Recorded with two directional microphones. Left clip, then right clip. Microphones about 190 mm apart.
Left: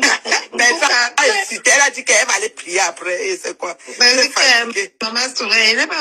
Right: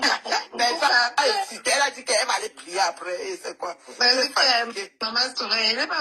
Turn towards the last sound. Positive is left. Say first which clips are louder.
# left 9 dB
turn(degrees=30)  # may be behind; listen again after turning